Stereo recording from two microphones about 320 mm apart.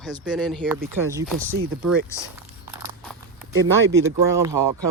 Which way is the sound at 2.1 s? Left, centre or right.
Centre.